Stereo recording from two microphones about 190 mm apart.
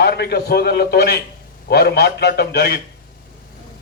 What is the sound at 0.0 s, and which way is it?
A man's voice, 55° left (ahead or behind).